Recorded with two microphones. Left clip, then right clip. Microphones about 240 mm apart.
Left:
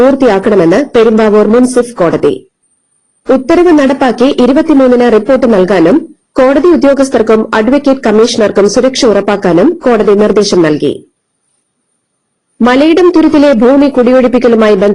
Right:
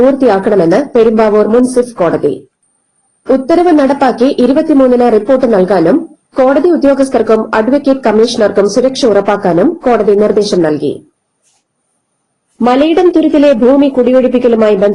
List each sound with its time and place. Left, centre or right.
0.0 s speech: left
3.2 s speech: left
3.8 s speech: left
12.6 s speech: left